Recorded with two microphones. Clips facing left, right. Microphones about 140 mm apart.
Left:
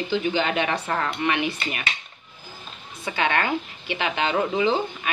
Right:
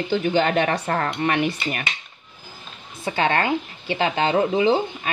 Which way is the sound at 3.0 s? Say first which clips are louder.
Right 3 dB; 35° right (ahead or behind).